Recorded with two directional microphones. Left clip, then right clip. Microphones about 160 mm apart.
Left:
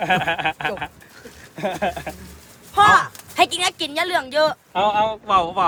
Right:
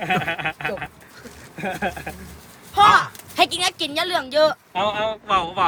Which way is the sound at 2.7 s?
Centre (ahead or behind).